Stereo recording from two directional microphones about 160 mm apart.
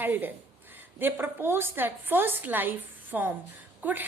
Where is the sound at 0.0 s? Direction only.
10° right (ahead or behind).